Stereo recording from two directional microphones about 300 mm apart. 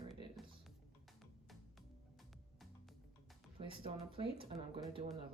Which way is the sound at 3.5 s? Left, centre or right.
Centre.